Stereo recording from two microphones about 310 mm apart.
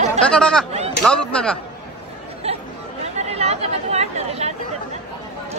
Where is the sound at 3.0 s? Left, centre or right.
Right.